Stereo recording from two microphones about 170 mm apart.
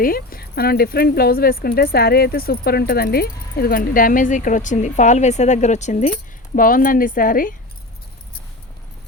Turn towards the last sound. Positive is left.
turn(degrees=55)  # may be behind; listen again after turning